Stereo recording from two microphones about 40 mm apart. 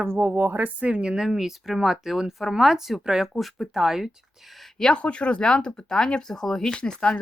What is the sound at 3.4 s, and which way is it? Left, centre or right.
Speech, centre.